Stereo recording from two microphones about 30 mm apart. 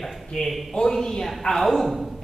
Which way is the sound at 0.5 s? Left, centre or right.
Centre.